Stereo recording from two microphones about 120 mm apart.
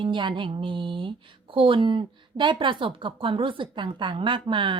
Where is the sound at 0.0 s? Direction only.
45° right (ahead or behind).